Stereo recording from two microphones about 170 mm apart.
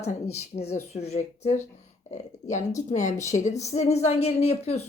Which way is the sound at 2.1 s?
45° left (ahead or behind).